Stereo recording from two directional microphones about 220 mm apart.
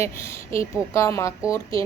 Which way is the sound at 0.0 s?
10° left (ahead or behind).